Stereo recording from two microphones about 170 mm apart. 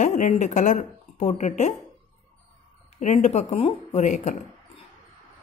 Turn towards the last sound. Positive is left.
turn(degrees=40)  # may be behind; listen again after turning